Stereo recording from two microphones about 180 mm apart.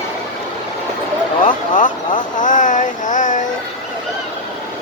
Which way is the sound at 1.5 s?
45° left (ahead or behind).